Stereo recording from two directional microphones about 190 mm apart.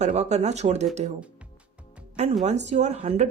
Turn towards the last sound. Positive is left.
turn(degrees=-35)  # may be behind; listen again after turning